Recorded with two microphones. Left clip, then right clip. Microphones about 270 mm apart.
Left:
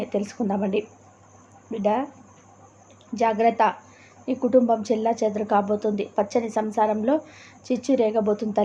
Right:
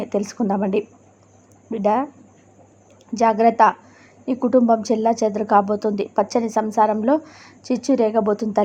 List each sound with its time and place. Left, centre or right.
0.0 s a woman's voice: centre
3.2 s a woman's voice: centre